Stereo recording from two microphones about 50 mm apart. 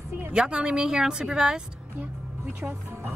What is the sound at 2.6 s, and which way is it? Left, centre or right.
Speech, right.